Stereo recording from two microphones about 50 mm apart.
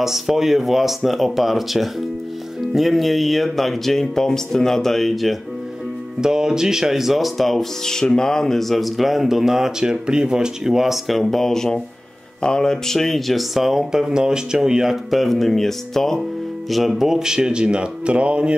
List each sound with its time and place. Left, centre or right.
0.0 s speech: centre
6.2 s speech: centre
16.7 s speech: centre; by 18.5 s right